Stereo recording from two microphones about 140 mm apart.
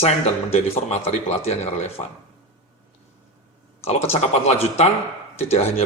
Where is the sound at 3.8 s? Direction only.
50° left (ahead or behind).